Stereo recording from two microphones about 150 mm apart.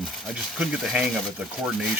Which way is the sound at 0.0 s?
Centre (ahead or behind).